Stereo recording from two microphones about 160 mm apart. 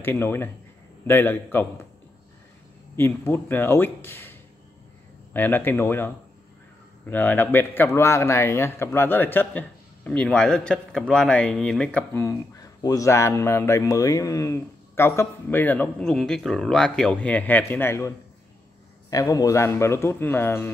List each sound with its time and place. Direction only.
0.0 s a man's voice: 15° left (ahead or behind)
3.0 s a man's voice: 15° left (ahead or behind)